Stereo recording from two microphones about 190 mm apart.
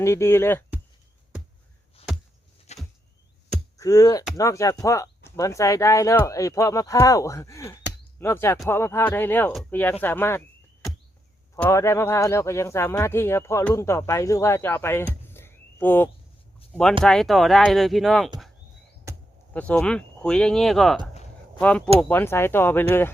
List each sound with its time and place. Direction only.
0.0 s speech: 15° left (ahead or behind)
2.0 s a sound: 30° left (ahead or behind)
3.8 s speech: 20° left (ahead or behind)
11.5 s speech: 15° left (ahead or behind)
19.5 s speech: 5° left (ahead or behind)